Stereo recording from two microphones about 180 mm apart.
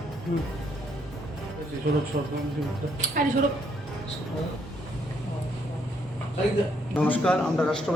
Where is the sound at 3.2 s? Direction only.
50° right (ahead or behind).